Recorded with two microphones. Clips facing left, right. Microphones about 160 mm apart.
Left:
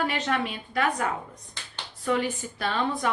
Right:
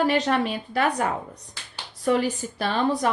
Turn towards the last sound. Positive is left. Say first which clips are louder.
# right 4 dB
turn(degrees=-35)  # may be behind; listen again after turning